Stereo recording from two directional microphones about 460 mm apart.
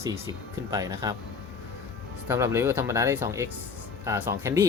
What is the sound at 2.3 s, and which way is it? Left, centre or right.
Speech, centre.